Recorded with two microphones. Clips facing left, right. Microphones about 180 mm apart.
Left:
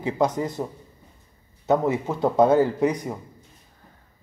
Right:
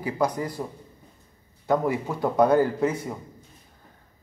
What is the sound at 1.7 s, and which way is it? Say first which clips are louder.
Speech: left 2 dB; 20° left (ahead or behind).